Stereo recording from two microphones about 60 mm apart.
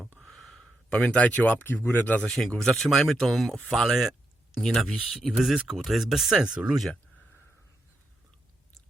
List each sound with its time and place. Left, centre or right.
0.2 s a sound: centre
0.9 s speech: centre
1.5 s speech: left
2.6 s speech: centre
4.6 s speech: centre
5.1 s speech: centre